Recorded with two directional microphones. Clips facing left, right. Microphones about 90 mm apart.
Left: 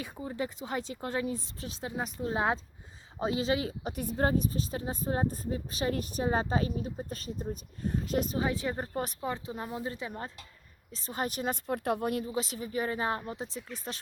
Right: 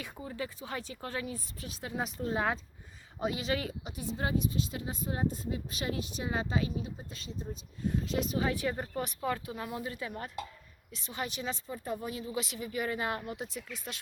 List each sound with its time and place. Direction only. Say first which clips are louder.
0.0 s speech: left 4 dB; 20° left (ahead or behind)
3.9 s speech: left 5 dB; 50° left (ahead or behind)
8.4 s speech: left 1 dB; 25° left (ahead or behind)
9.2 s speech: right 1 dB; 25° left (ahead or behind)
10.9 s speech: left 4 dB; 40° left (ahead or behind)
11.7 s speech: left 7 dB; 75° left (ahead or behind)
12.2 s speech: left 2 dB; 35° left (ahead or behind)